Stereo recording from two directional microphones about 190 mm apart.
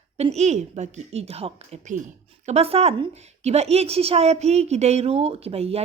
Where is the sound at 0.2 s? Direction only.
35° right (ahead or behind).